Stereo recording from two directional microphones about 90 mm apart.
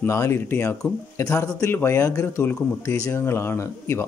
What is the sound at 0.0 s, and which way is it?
Speech, 30° left (ahead or behind).